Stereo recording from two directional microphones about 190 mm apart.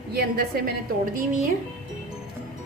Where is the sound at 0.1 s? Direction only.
55° right (ahead or behind).